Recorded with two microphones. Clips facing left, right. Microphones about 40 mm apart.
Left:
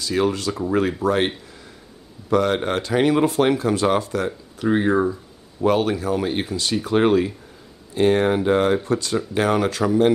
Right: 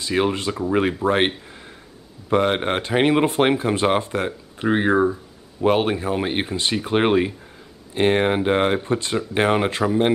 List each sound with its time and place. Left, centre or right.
0.0 s speech: right
4.9 s speech: centre
5.6 s speech: right